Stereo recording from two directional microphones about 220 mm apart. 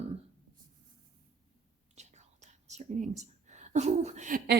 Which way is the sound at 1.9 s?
30° right (ahead or behind).